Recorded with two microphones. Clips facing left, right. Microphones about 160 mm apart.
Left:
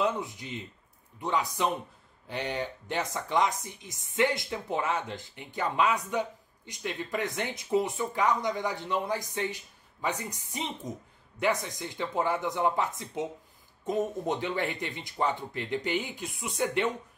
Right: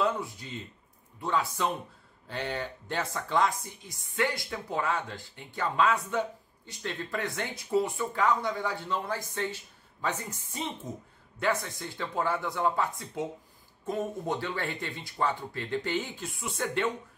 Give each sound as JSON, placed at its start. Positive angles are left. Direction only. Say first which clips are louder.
{"t": 0.0, "sound": "speech", "louder": "even", "side_deg": 20}